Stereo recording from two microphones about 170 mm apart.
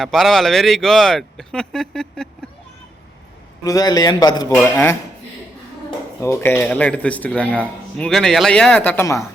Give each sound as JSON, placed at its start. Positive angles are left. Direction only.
{"t": 0.0, "sound": "speech", "side_deg": 0}
{"t": 3.6, "sound": "a man's voice", "side_deg": 20}
{"t": 4.5, "sound": "speech", "side_deg": 10}
{"t": 6.2, "sound": "speech", "side_deg": 15}